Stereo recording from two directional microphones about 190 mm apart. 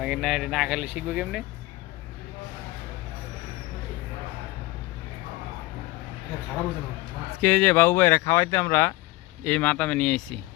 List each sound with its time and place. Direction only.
0.0 s speech: 5° right (ahead or behind)
7.4 s speech: 10° left (ahead or behind)